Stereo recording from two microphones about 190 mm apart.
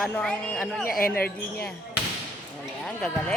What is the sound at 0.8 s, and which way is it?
Speech, 50° left (ahead or behind).